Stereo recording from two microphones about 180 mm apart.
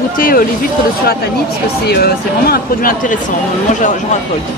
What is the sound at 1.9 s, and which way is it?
Speech, 60° left (ahead or behind).